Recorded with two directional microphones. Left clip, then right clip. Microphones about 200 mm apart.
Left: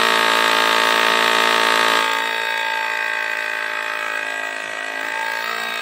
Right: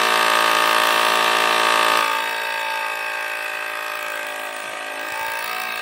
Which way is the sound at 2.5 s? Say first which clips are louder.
Left 3 dB; 30° left (ahead or behind).